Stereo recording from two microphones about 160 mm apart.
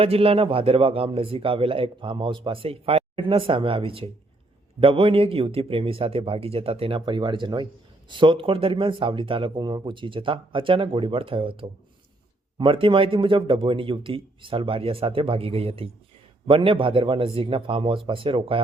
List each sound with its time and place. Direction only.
0.0 s a man's voice: 35° right (ahead or behind)